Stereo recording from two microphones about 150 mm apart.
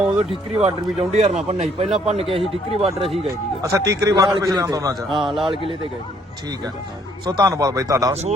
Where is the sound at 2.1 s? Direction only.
40° right (ahead or behind).